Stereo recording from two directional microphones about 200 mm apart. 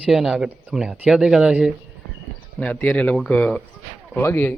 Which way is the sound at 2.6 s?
10° left (ahead or behind).